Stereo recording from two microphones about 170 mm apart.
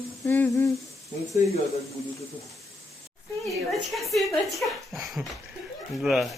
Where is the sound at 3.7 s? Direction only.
Centre (ahead or behind).